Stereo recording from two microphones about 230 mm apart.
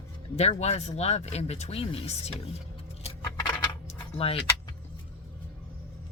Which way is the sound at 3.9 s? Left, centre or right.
Left.